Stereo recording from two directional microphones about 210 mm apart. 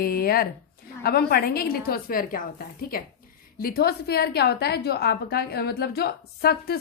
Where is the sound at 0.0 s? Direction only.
45° left (ahead or behind).